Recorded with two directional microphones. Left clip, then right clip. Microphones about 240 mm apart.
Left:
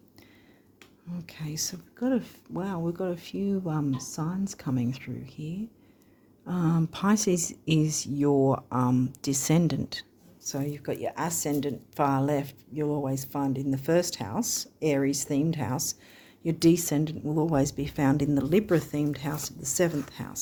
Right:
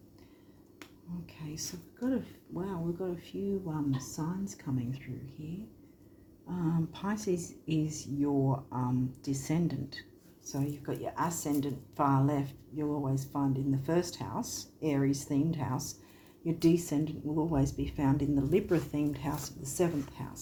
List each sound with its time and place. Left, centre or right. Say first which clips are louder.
1.3 s speech: left 8 dB; left
6.5 s speech: left 6 dB; left